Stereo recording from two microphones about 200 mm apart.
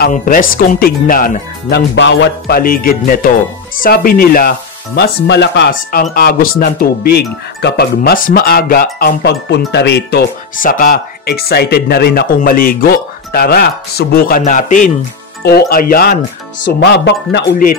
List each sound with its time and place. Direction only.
0.0 s speech: 45° left (ahead or behind)
2.0 s speech: 60° left (ahead or behind); by 14.9 s 40° left (ahead or behind)
15.4 s speech: 50° left (ahead or behind)
16.6 s speech: 60° left (ahead or behind)